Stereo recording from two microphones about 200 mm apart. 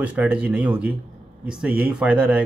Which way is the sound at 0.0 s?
5° right (ahead or behind).